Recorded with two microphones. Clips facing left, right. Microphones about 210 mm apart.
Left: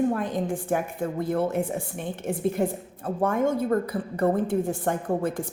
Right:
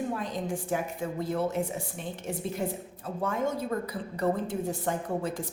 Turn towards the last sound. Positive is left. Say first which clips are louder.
# left 5 dB
turn(degrees=55)  # may be behind; listen again after turning